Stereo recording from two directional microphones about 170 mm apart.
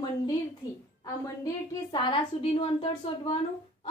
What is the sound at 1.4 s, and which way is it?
Speech, 25° left (ahead or behind).